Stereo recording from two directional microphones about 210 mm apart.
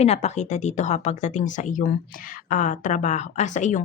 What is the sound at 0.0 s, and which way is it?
Speech, 30° left (ahead or behind).